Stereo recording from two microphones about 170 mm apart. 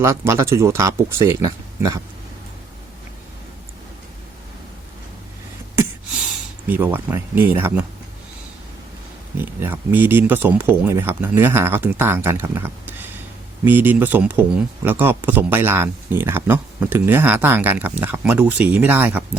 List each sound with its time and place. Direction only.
0.0 s speech: 15° right (ahead or behind)
6.7 s speech: 10° right (ahead or behind)
9.4 s speech: 15° right (ahead or behind)